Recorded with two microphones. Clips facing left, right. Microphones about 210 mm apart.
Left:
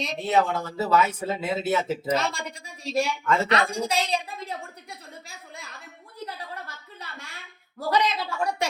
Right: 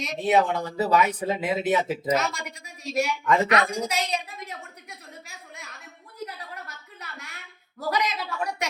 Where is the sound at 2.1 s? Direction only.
30° left (ahead or behind).